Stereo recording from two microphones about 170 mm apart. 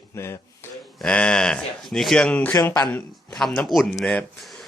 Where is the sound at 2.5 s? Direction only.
20° left (ahead or behind).